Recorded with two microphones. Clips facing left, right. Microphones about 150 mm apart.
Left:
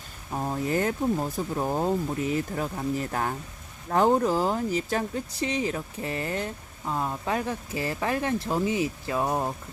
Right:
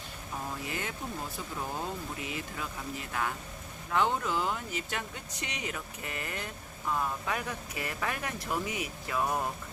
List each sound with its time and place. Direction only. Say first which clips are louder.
0.3 s speech: left 11 dB; 40° left (ahead or behind); by 9.5 s 25° left (ahead or behind)